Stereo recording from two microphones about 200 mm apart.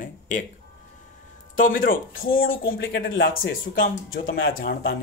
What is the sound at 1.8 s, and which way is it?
Speech, 45° left (ahead or behind).